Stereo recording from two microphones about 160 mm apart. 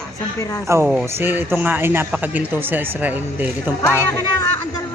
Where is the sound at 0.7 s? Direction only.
10° right (ahead or behind).